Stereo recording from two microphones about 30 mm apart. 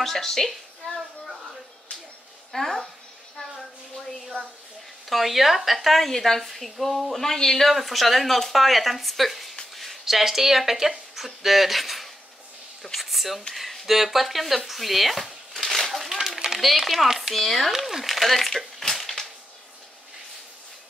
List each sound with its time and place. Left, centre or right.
0.0 s speech: centre
2.5 s speech: centre
5.1 s speech: centre
13.6 s chopping: centre
16.5 s speech: centre
17.3 s speech: centre
17.6 s speech: centre
18.8 s crushing: centre